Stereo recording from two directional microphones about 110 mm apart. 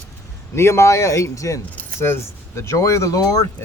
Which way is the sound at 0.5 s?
25° left (ahead or behind).